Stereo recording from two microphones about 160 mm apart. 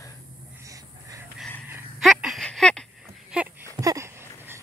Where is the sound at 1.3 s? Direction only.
10° left (ahead or behind).